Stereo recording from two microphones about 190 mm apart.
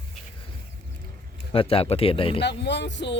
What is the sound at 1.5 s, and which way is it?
Speech, 30° left (ahead or behind).